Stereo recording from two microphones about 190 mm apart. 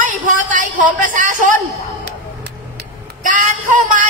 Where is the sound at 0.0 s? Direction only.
40° right (ahead or behind).